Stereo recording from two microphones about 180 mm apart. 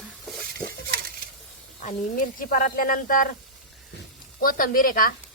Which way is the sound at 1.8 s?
45° left (ahead or behind).